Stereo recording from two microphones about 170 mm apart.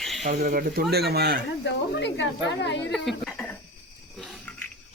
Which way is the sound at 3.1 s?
5° left (ahead or behind).